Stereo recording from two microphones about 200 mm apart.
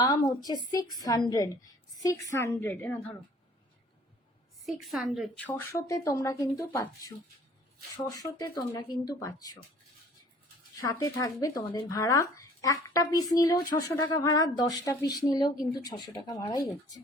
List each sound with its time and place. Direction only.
0.4 s a woman's voice: 20° left (ahead or behind)
4.6 s speech: centre (ahead or behind); by 9.6 s 20° left (ahead or behind)
10.8 s speech: 15° left (ahead or behind)